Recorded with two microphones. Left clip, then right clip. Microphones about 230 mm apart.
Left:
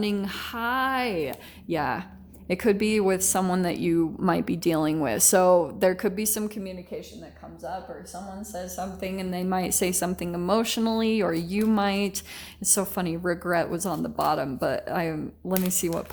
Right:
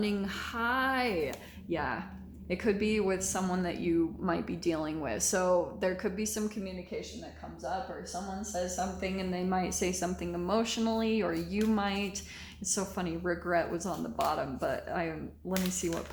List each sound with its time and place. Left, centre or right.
0.0 s speech: left
1.7 s a woman's voice: left
8.1 s a woman's voice: left